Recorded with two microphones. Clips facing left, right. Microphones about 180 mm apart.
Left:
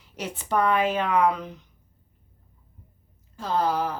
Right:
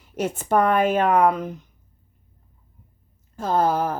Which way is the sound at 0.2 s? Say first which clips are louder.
Right 5 dB; 50° right (ahead or behind).